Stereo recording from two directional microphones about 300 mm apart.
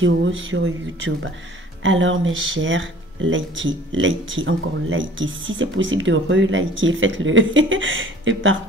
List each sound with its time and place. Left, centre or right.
0.0 s speech: right